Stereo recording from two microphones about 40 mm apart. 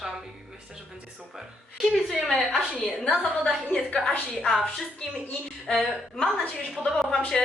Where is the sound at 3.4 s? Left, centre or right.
Left.